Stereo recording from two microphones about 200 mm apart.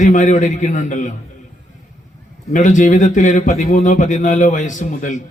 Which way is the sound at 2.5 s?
40° left (ahead or behind).